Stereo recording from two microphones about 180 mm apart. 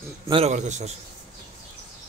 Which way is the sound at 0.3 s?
35° right (ahead or behind).